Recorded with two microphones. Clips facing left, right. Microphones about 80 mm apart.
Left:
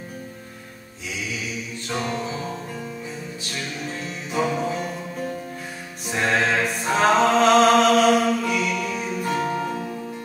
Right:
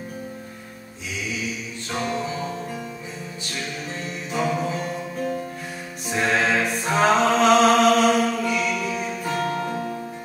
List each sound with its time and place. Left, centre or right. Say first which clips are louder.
1.9 s music: even; centre
4.3 s music: left 1 dB; centre
6.0 s music: even; centre
9.5 s music: left 1 dB; centre